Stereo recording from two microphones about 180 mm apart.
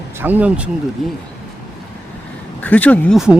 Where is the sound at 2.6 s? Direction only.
10° left (ahead or behind).